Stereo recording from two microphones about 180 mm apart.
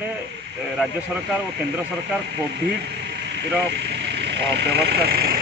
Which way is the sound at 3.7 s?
65° right (ahead or behind).